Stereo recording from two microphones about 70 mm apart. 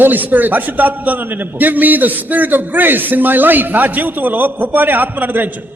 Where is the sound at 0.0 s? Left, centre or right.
Right.